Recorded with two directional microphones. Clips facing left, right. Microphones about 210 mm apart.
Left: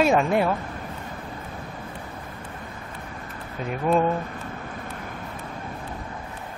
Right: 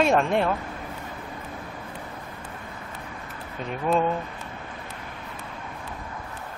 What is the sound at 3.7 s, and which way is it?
Speech, 5° left (ahead or behind).